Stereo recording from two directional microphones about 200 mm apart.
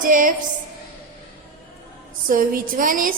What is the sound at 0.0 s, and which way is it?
Speech, 40° right (ahead or behind).